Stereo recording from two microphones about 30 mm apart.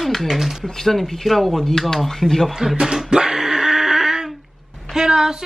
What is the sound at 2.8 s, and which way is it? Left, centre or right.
Music, centre.